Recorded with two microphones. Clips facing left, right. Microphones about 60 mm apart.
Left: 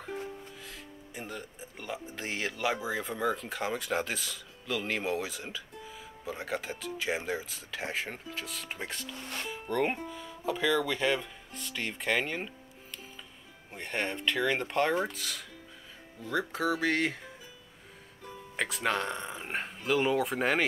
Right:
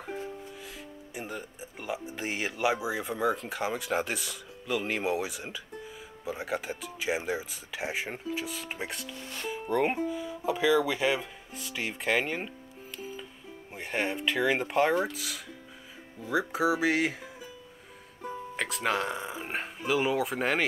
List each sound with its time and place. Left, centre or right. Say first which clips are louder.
0.7 s speech: right 3 dB; centre
18.6 s speech: right 1 dB; centre